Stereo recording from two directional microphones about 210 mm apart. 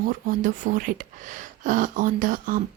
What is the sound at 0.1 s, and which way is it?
Speech, 40° right (ahead or behind).